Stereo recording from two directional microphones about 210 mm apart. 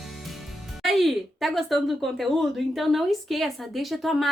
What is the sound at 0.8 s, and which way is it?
Speech, centre (ahead or behind).